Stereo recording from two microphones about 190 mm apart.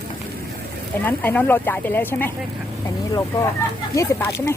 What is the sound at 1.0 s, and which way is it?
Speech, 10° left (ahead or behind).